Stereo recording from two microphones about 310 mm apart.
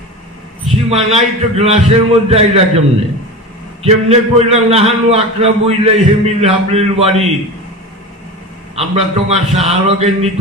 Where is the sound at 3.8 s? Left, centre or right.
Centre.